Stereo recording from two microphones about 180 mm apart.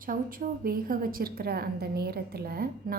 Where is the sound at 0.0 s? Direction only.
50° right (ahead or behind).